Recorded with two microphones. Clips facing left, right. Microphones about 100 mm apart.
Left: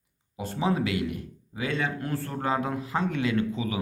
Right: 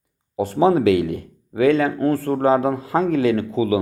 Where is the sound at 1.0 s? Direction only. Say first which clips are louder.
Right 6 dB; 90° right.